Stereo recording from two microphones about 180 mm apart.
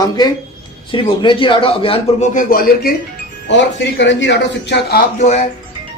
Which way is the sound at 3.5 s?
90° left.